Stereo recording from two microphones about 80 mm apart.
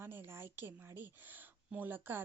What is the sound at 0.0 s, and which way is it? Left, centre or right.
A woman's voice, right.